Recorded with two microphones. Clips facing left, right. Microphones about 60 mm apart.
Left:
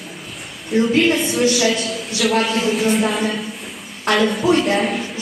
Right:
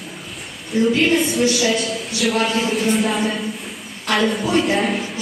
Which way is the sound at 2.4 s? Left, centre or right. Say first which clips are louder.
Left 1 dB; centre.